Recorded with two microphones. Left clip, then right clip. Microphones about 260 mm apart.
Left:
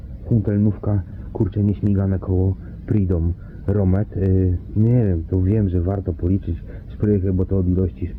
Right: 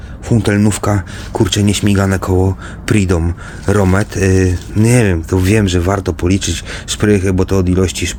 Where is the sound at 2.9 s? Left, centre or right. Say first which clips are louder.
Right 9 dB; right.